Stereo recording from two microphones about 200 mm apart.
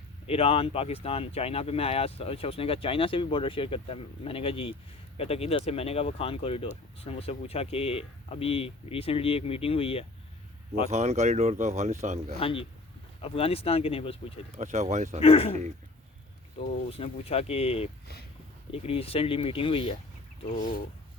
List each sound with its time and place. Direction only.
0.3 s speech: 30° left (ahead or behind)
10.8 s speech: 35° right (ahead or behind)
12.4 s speech: 25° left (ahead or behind)
14.5 s speech: 35° right (ahead or behind)
15.2 s speech: 30° left (ahead or behind)
16.6 s speech: 30° left (ahead or behind)
20.6 s speech: 40° left (ahead or behind)